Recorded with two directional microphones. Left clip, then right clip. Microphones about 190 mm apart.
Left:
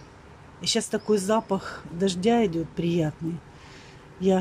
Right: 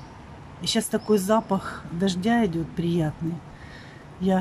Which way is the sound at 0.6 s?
Centre (ahead or behind).